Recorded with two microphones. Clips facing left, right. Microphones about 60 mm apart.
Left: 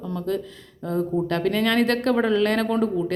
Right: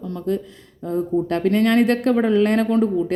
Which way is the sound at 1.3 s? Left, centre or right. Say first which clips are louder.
Right 6 dB; right.